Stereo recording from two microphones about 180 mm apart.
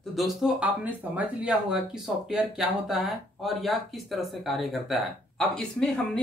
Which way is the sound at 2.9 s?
Centre (ahead or behind).